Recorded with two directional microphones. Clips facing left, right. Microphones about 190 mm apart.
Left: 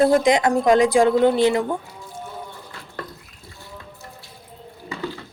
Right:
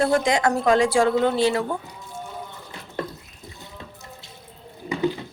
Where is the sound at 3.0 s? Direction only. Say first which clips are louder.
Right 5 dB; 20° right (ahead or behind).